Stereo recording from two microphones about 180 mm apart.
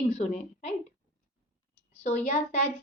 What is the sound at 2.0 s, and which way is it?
Speech, 40° left (ahead or behind).